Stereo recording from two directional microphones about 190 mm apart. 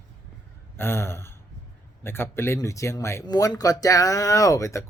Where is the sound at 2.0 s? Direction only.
10° left (ahead or behind).